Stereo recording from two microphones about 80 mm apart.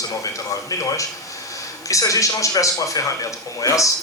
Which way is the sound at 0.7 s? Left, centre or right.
Left.